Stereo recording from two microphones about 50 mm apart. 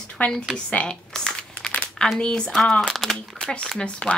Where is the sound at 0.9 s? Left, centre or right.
Centre.